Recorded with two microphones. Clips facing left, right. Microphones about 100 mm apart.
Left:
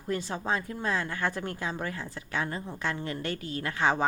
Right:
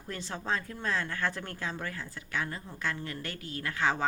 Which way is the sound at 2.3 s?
25° left (ahead or behind).